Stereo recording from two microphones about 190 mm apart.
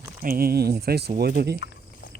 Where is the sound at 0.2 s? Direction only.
50° right (ahead or behind).